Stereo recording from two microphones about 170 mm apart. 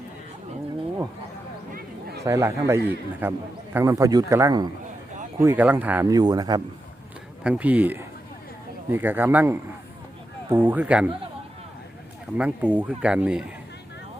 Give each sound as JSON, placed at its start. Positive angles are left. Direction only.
{"t": 1.7, "sound": "a sound", "side_deg": -70}
{"t": 2.2, "sound": "a man's voice", "side_deg": -15}
{"t": 7.4, "sound": "speech", "side_deg": -5}
{"t": 12.4, "sound": "speech", "side_deg": -10}